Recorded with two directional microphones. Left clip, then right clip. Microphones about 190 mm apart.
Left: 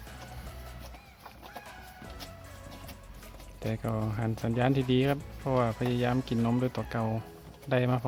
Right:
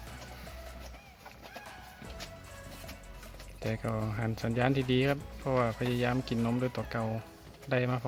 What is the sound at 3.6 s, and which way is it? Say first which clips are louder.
Speech: left 1 dB; 5° left (ahead or behind).